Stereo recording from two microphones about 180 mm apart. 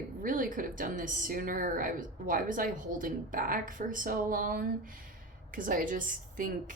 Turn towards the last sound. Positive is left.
turn(degrees=-50)  # may be behind; listen again after turning